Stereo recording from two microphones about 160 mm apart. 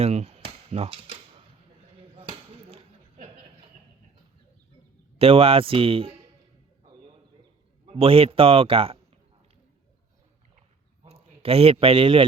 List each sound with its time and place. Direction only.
0.0 s cap gun: 40° right (ahead or behind)
2.0 s a sound: 35° right (ahead or behind)
5.1 s a man's voice: 35° right (ahead or behind)
7.9 s a man's voice: 35° right (ahead or behind)
11.0 s a man's voice: 40° right (ahead or behind)